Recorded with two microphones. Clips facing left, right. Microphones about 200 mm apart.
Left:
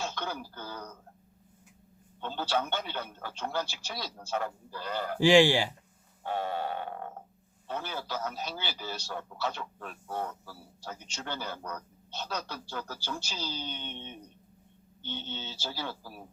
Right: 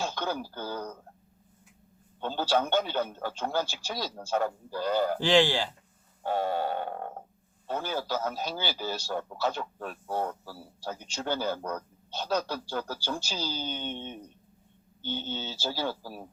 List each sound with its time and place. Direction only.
0.2 s speech: 40° right (ahead or behind)
2.2 s a man's voice: 40° right (ahead or behind)
5.2 s speech: 10° left (ahead or behind)
6.2 s grunt: 40° right (ahead or behind)
7.7 s a man's voice: 40° right (ahead or behind)